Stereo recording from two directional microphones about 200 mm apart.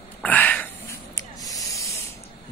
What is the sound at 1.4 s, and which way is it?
Spray, 15° left (ahead or behind).